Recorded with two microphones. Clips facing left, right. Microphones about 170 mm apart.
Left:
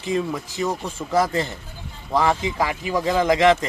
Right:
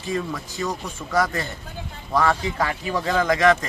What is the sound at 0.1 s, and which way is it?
Speech, 20° left (ahead or behind).